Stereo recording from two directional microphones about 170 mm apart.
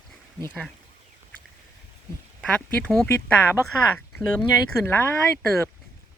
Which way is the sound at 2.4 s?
5° left (ahead or behind).